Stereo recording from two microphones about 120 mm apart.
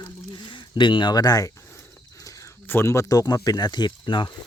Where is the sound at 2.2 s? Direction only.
25° left (ahead or behind).